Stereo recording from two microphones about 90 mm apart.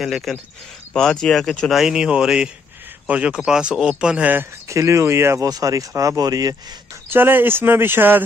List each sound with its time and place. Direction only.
0.0 s speech: centre (ahead or behind)
1.8 s speech: 10° right (ahead or behind)
4.6 s speech: 35° right (ahead or behind)
5.4 s speech: 40° right (ahead or behind)
7.1 s speech: 20° right (ahead or behind)